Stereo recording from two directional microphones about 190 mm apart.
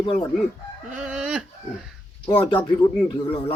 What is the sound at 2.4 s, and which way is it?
Speech, 25° left (ahead or behind).